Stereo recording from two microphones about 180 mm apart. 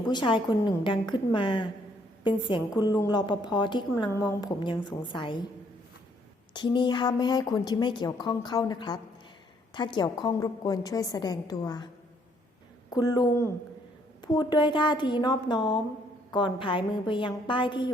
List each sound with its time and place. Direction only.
0.1 s a woman's voice: 25° left (ahead or behind)
6.5 s a woman's voice: 25° left (ahead or behind)
12.9 s a woman's voice: 20° left (ahead or behind)